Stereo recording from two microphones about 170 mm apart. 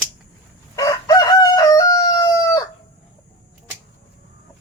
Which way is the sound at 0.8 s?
20° left (ahead or behind).